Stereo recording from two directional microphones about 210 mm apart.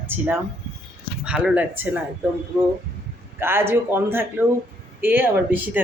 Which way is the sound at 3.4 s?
10° right (ahead or behind).